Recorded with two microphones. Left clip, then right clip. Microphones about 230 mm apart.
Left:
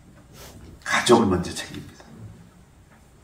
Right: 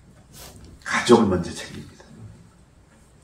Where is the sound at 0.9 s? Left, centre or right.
Left.